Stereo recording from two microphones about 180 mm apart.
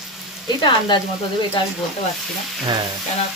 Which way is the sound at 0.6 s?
25° left (ahead or behind).